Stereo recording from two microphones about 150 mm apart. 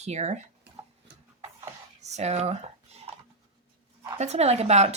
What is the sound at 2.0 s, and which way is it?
Speech, 50° right (ahead or behind).